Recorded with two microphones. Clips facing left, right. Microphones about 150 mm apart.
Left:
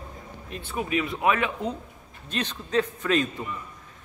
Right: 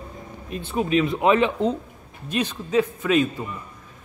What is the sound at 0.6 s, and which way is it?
Speech, 25° right (ahead or behind).